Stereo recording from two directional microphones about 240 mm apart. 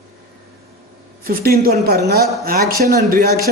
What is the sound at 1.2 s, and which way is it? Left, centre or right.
A man's voice, right.